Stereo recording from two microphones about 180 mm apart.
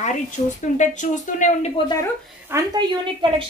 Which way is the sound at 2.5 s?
15° right (ahead or behind).